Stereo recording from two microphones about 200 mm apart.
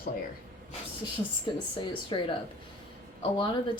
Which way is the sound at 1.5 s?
25° left (ahead or behind).